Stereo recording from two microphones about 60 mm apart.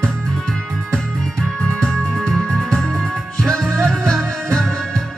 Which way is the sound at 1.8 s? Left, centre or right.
Centre.